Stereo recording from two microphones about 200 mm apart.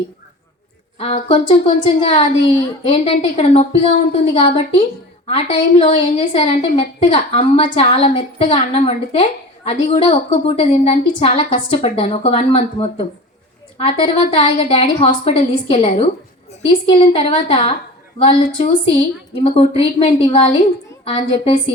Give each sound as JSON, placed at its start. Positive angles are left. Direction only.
{"t": 0.9, "sound": "a woman's voice", "side_deg": 30}